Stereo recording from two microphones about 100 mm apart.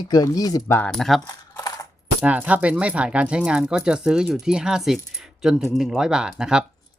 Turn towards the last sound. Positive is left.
turn(degrees=-10)  # may be behind; listen again after turning